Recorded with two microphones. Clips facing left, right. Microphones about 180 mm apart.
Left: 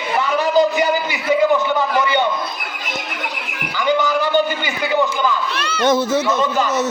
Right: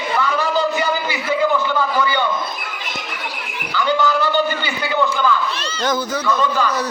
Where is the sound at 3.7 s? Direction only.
15° left (ahead or behind).